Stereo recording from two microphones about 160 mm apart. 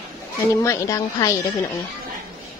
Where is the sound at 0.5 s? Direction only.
20° left (ahead or behind).